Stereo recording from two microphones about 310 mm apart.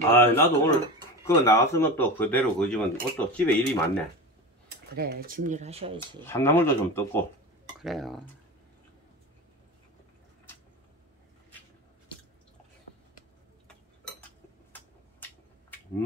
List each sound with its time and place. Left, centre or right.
0.1 s speech: centre
4.6 s speech: right
5.9 s speech: centre